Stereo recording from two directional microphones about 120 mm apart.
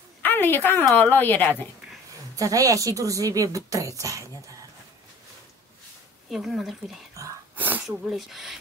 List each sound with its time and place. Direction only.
0.2 s a woman's voice: 15° left (ahead or behind)
2.3 s speech: 30° right (ahead or behind)
6.3 s speech: 5° right (ahead or behind)
7.5 s sneeze: 15° right (ahead or behind)
7.8 s speech: 5° right (ahead or behind)